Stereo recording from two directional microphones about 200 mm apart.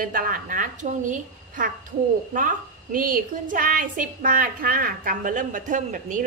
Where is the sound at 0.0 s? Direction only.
45° right (ahead or behind).